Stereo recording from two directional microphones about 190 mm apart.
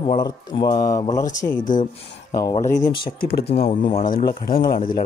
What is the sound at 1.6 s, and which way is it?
Speech, 45° left (ahead or behind).